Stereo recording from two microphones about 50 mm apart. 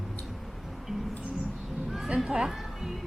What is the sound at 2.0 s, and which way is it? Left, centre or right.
Music, centre.